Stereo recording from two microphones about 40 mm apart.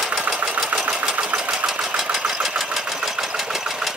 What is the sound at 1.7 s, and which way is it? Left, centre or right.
Engine, centre.